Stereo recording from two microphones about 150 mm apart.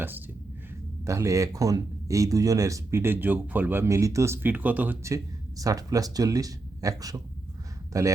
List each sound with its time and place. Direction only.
1.0 s speech: 20° right (ahead or behind)